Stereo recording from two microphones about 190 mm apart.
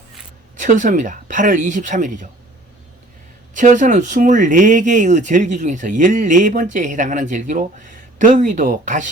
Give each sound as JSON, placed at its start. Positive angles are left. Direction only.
{"t": 0.6, "sound": "speech", "side_deg": -40}
{"t": 3.5, "sound": "speech", "side_deg": -40}